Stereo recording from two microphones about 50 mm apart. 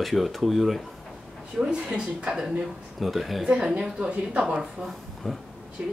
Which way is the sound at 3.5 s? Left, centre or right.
Centre.